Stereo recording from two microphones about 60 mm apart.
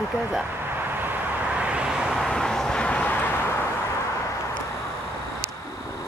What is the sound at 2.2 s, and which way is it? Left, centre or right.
Vehicle, centre.